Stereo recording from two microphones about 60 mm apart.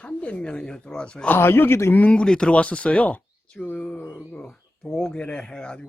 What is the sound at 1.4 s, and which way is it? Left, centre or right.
Speech, left.